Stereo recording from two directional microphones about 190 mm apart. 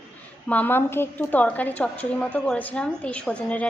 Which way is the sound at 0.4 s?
10° left (ahead or behind).